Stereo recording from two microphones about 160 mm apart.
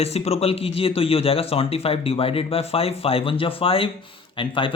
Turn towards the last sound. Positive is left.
turn(degrees=30)  # may be behind; listen again after turning